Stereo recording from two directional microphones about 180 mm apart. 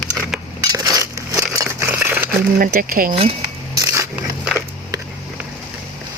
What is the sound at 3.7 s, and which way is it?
Biting, 20° right (ahead or behind).